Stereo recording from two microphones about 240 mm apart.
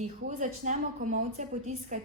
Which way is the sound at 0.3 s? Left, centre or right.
Right.